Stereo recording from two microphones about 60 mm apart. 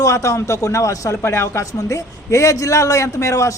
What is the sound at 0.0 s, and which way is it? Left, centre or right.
A man's voice, left.